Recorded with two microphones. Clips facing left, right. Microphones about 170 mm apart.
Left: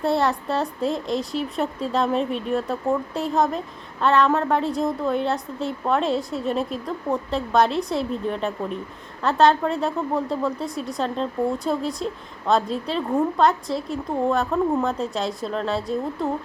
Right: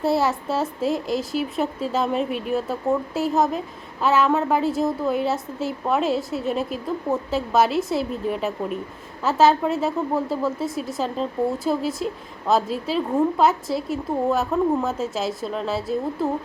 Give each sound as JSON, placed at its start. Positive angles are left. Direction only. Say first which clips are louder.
{"t": 0.0, "sound": "a woman's voice", "louder": "even", "side_deg": -5}